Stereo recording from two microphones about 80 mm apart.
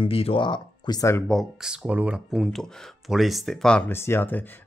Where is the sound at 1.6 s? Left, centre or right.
Centre.